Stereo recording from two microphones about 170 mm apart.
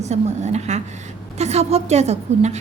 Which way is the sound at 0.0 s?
40° right (ahead or behind).